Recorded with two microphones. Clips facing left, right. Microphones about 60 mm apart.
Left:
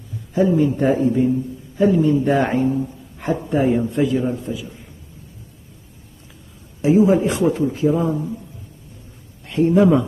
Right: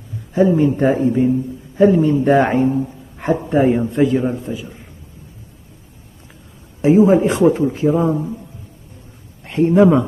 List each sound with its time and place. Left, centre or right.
0.3 s a man's voice: right
6.8 s a man's voice: right
9.5 s a man's voice: right